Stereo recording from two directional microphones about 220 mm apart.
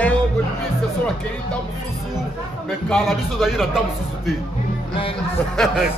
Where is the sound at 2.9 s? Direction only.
Centre (ahead or behind).